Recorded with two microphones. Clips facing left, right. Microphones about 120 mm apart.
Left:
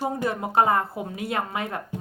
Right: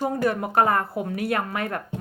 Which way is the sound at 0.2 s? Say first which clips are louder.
Right 1 dB; 20° left (ahead or behind).